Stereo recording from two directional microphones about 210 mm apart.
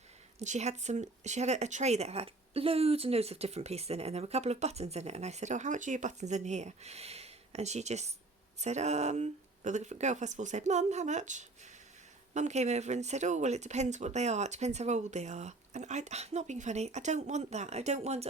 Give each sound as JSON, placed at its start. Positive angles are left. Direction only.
{"t": 0.3, "sound": "speech", "side_deg": -35}